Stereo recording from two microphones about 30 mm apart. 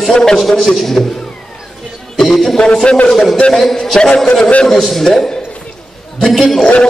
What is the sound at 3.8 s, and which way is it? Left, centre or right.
Speech, left.